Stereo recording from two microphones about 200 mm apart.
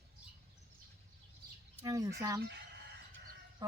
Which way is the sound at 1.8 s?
15° right (ahead or behind).